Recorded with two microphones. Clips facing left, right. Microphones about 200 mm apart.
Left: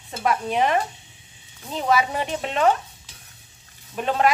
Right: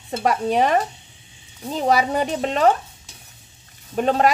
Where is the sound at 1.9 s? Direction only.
35° right (ahead or behind).